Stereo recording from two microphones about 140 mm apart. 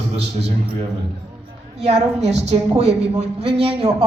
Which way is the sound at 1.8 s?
50° right (ahead or behind).